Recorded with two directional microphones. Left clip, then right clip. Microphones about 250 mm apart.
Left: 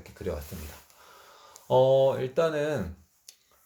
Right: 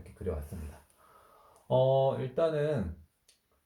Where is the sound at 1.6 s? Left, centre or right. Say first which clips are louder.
Left 5 dB; left.